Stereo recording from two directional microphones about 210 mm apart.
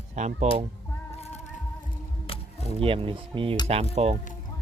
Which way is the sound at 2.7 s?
25° right (ahead or behind).